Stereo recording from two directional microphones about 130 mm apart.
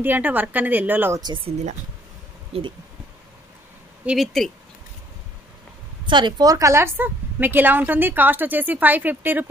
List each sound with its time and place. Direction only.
0.0 s a woman's voice: 15° right (ahead or behind)
1.2 s speech: 40° right (ahead or behind)
2.5 s speech: 45° right (ahead or behind)
4.0 s speech: 5° right (ahead or behind)
6.0 s a woman's voice: 35° right (ahead or behind); by 9.5 s 15° right (ahead or behind)